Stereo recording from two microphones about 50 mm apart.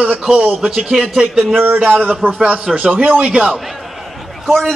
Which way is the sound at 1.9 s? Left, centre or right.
Right.